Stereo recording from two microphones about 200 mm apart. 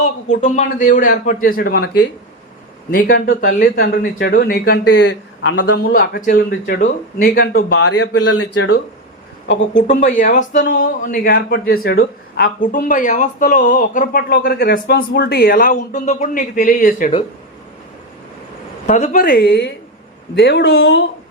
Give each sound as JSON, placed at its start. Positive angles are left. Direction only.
{"t": 0.0, "sound": "speech", "side_deg": 35}
{"t": 4.3, "sound": "speech", "side_deg": 45}
{"t": 5.7, "sound": "speech", "side_deg": 45}
{"t": 7.5, "sound": "speech", "side_deg": 75}
{"t": 9.7, "sound": "speech", "side_deg": 40}
{"t": 18.9, "sound": "speech", "side_deg": 35}